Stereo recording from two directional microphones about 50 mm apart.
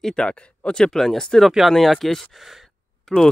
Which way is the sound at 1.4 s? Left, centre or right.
Centre.